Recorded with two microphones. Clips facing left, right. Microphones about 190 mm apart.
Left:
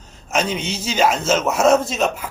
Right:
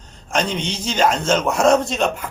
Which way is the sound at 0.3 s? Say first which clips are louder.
Even; 5° left (ahead or behind).